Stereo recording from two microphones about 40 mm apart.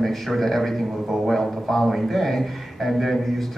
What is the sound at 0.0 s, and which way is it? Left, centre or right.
A man's voice, centre.